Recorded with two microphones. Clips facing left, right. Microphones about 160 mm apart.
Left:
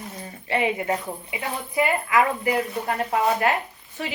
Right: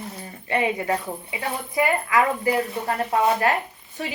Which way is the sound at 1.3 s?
35° right (ahead or behind).